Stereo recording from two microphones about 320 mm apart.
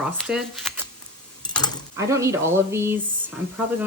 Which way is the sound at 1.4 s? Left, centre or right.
Centre.